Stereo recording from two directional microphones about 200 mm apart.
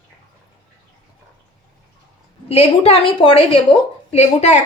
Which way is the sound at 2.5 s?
30° left (ahead or behind).